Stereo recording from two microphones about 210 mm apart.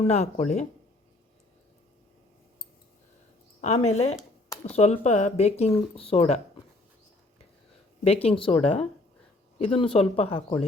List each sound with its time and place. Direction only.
0.0 s speech: 30° left (ahead or behind)
3.6 s speech: 30° left (ahead or behind)
8.0 s speech: 30° left (ahead or behind)